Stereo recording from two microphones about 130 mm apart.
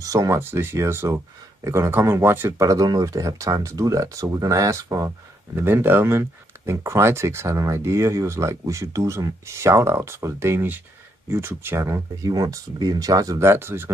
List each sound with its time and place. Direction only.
0.0 s speech: 25° right (ahead or behind)